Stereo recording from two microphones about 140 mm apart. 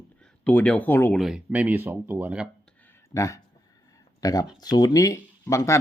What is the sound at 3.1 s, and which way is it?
Speech, 20° left (ahead or behind).